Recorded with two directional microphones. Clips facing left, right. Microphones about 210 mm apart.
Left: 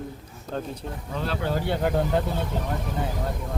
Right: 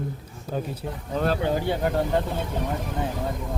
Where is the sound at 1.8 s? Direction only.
Centre (ahead or behind).